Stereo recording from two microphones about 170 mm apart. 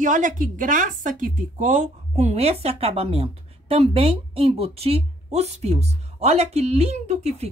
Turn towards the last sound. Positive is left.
turn(degrees=-40)  # may be behind; listen again after turning